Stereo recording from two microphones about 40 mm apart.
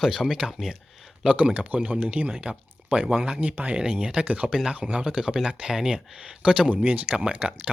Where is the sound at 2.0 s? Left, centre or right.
Right.